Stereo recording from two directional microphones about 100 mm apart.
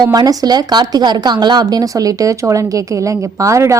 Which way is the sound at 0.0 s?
40° right (ahead or behind).